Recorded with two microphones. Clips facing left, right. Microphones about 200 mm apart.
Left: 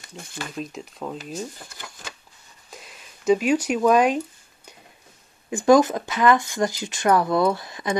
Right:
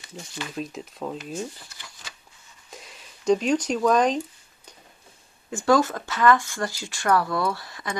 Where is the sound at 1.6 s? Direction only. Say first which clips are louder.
Left 6 dB; 50° left (ahead or behind).